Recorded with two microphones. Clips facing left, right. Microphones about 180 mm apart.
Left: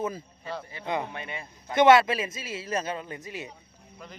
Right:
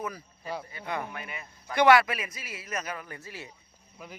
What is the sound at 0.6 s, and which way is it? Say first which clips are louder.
A man's voice: left 4 dB; 25° left (ahead or behind).